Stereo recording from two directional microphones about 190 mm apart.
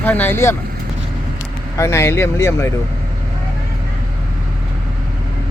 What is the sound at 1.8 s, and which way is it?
Speech, 15° left (ahead or behind).